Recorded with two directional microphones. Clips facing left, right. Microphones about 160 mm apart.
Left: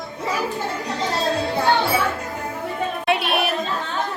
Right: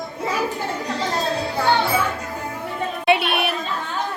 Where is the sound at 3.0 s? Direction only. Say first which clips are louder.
Right 3 dB; centre (ahead or behind).